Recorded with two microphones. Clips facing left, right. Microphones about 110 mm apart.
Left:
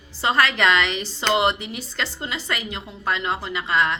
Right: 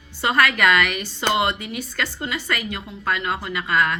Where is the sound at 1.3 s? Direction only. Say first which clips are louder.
Left 2 dB; 25° left (ahead or behind).